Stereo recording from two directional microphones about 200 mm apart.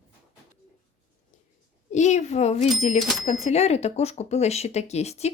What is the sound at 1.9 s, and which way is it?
A child's voice, 35° left (ahead or behind).